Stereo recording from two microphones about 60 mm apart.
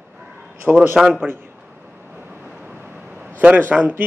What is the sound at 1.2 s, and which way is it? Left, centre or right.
Speech, right.